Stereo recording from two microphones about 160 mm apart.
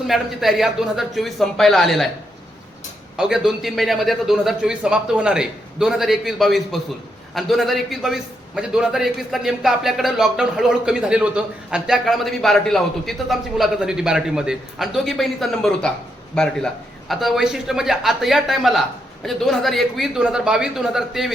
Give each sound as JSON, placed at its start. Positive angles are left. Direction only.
{"t": 0.1, "sound": "a man's voice", "side_deg": 0}
{"t": 3.2, "sound": "a man's voice", "side_deg": -5}